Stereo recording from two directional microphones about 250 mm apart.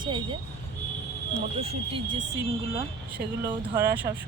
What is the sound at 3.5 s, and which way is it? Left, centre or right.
Speech, centre.